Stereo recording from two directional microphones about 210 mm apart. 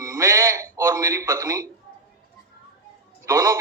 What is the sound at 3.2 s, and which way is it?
Speech, 15° right (ahead or behind).